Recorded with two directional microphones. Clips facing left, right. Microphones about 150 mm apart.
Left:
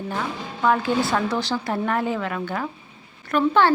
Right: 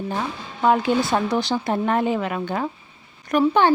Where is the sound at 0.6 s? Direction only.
20° right (ahead or behind).